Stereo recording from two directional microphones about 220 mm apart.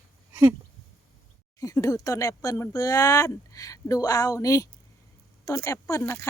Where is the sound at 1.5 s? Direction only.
15° left (ahead or behind).